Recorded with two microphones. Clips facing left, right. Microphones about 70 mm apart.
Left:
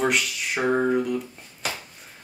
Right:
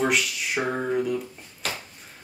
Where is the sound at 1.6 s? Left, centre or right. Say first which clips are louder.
Left 1 dB; centre.